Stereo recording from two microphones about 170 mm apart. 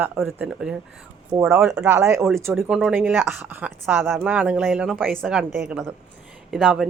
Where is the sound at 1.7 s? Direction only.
15° right (ahead or behind).